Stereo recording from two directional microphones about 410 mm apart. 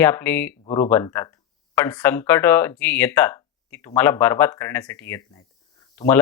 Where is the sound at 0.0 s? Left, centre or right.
Centre.